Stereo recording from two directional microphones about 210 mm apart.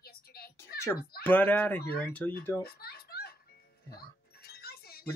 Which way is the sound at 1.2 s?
10° left (ahead or behind).